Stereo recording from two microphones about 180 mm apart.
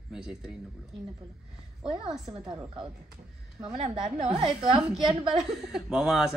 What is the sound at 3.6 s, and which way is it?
Speech, 35° right (ahead or behind).